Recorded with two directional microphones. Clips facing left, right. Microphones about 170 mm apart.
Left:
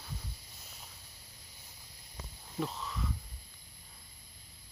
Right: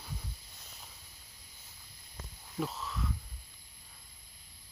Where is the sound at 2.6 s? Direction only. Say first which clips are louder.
Even; centre (ahead or behind).